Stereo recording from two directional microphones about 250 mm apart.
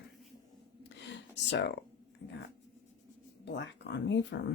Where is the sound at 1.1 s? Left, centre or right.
Left.